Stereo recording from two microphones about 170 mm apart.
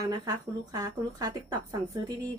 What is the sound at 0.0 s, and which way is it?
A woman's voice, 20° right (ahead or behind).